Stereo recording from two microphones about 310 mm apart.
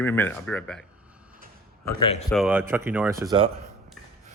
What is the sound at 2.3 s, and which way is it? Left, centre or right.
Speech, centre.